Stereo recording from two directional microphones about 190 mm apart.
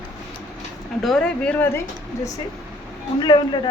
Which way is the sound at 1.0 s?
Centre (ahead or behind).